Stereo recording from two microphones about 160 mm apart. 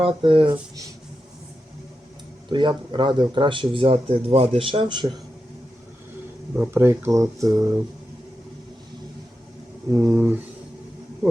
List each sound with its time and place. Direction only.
0.0 s speech: 35° right (ahead or behind)
2.5 s speech: 30° right (ahead or behind)
6.6 s speech: 15° right (ahead or behind)
9.9 s speech: 15° right (ahead or behind)